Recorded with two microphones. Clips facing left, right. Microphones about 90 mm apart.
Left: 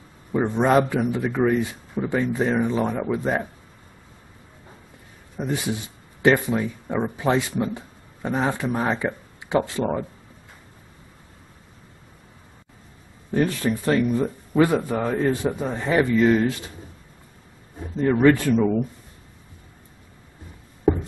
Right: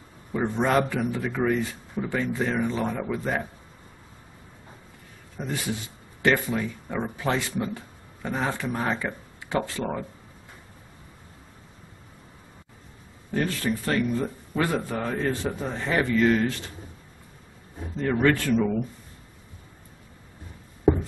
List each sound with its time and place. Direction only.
0.3 s speech: 20° left (ahead or behind)
5.4 s speech: 20° left (ahead or behind)
13.3 s speech: 15° left (ahead or behind)
17.9 s speech: 15° left (ahead or behind)